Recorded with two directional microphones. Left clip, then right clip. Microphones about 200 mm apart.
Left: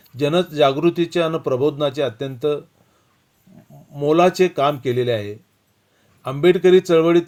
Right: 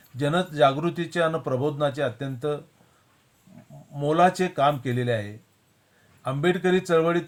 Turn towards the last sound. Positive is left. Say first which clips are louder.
# left 8 dB
turn(degrees=30)  # may be behind; listen again after turning